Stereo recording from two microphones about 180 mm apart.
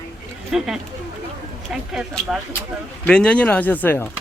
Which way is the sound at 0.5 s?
5° right (ahead or behind).